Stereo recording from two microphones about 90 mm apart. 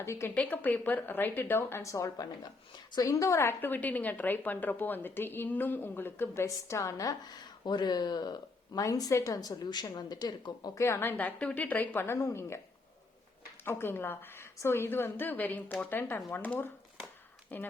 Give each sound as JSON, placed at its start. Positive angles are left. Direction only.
{"t": 0.0, "sound": "a woman's voice", "side_deg": 30}
{"t": 0.3, "sound": "a woman's voice", "side_deg": 20}
{"t": 2.4, "sound": "speech", "side_deg": 55}
{"t": 3.0, "sound": "a woman's voice", "side_deg": 35}
{"t": 7.6, "sound": "speech", "side_deg": 50}
{"t": 10.8, "sound": "a woman's voice", "side_deg": 30}
{"t": 13.7, "sound": "a woman's voice", "side_deg": 25}